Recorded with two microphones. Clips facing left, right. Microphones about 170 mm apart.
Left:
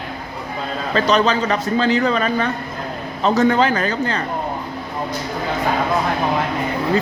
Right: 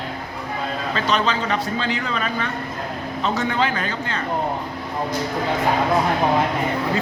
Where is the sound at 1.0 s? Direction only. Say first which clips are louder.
Left 6 dB; 40° left (ahead or behind).